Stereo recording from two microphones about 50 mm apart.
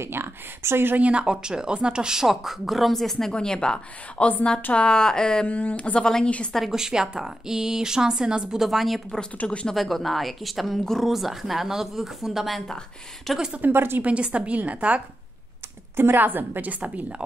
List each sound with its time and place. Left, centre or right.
0.0 s speech: right
0.9 s speech: right; by 3.8 s centre
4.2 s speech: left
4.7 s speech: centre
5.5 s speech: left
6.0 s speech: centre
6.7 s speech: centre
8.6 s a woman's voice: centre
9.4 s speech: left
9.8 s a woman's voice: centre
13.6 s speech: right
14.0 s a woman's voice: right
16.0 s a woman's voice: right